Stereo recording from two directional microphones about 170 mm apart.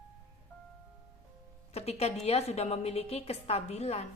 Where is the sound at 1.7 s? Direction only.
40° left (ahead or behind).